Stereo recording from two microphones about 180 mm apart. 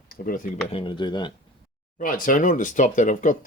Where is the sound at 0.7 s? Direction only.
30° left (ahead or behind).